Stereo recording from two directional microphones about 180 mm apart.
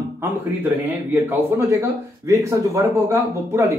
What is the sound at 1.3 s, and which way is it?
A man's voice, 15° right (ahead or behind).